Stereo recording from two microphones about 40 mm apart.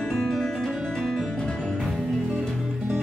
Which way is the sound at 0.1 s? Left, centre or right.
Centre.